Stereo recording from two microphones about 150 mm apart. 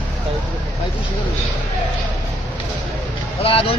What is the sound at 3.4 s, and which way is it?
Speech, 40° left (ahead or behind).